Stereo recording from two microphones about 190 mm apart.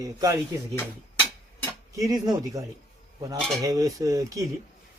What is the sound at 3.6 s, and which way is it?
Speech, 20° right (ahead or behind).